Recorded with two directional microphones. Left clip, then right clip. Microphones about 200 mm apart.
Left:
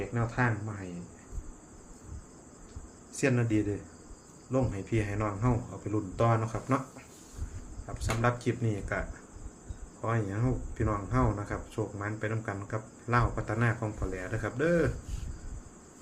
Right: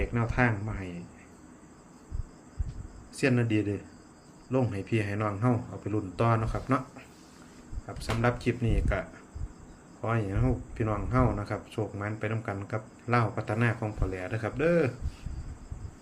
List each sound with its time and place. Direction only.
0.1 s a man's voice: 25° right (ahead or behind)
3.2 s a man's voice: 20° right (ahead or behind)
7.9 s speech: 15° right (ahead or behind)